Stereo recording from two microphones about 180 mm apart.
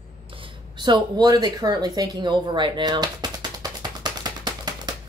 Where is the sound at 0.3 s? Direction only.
25° right (ahead or behind).